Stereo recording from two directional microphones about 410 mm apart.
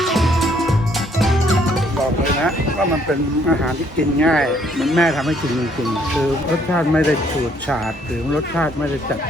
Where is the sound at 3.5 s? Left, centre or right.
Centre.